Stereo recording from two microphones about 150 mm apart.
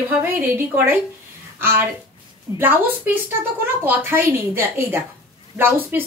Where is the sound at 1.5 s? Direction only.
15° right (ahead or behind).